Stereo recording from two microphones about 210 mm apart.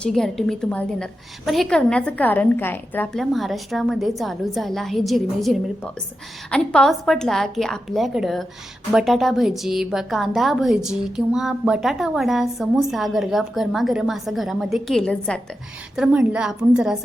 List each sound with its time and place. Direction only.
0.0 s a woman's voice: centre (ahead or behind)